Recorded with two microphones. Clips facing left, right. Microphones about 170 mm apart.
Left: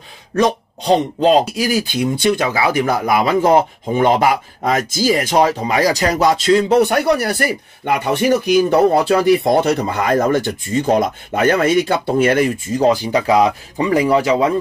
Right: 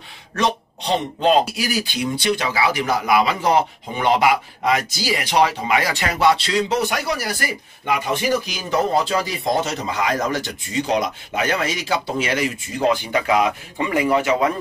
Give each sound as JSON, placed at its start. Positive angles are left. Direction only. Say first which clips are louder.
{"t": 0.4, "sound": "speech", "louder": "left 6 dB", "side_deg": 40}